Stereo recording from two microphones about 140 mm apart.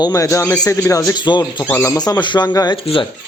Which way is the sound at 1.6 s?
20° left (ahead or behind).